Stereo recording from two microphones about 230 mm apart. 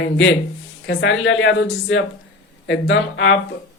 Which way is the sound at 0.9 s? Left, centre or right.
Left.